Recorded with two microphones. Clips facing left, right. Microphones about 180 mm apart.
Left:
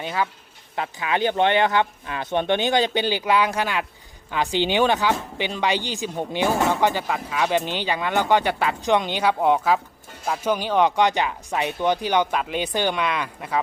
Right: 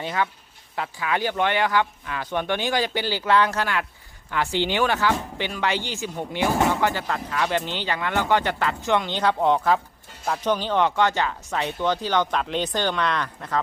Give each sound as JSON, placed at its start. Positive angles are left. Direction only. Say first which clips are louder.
{"t": 0.8, "sound": "speech", "louder": "left 2 dB", "side_deg": 20}